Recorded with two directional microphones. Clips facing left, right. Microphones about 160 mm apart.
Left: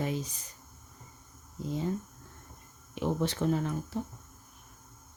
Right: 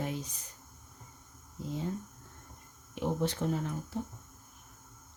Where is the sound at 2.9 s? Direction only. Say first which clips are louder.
Left 1 dB; 90° left.